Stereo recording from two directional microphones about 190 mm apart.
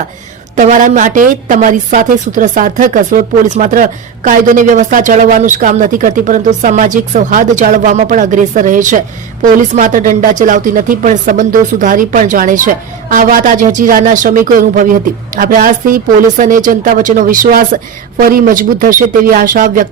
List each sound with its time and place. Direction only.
0.5 s a woman's voice: 45° right (ahead or behind)